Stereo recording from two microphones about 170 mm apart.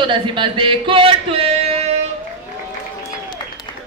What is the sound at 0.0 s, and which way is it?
Speech, 30° right (ahead or behind).